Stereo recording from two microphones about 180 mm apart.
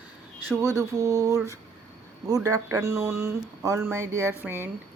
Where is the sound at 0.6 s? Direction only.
15° right (ahead or behind).